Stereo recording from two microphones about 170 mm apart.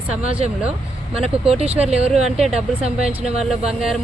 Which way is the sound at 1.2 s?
35° right (ahead or behind).